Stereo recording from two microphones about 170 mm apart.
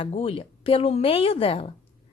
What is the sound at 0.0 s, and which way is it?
A woman's voice, 35° left (ahead or behind).